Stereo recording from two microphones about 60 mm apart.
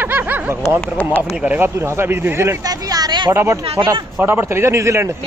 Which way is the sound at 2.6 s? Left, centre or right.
Right.